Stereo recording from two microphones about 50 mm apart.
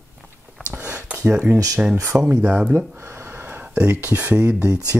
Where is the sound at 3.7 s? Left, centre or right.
Right.